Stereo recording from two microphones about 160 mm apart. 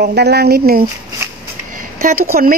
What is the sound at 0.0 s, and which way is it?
Speech, 85° right.